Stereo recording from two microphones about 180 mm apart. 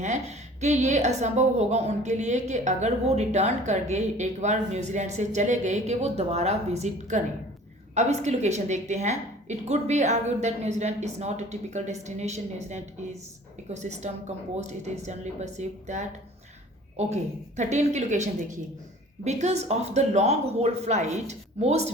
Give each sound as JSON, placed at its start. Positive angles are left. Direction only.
{"t": 0.0, "sound": "a woman's voice", "side_deg": -40}
{"t": 17.6, "sound": "a woman's voice", "side_deg": -40}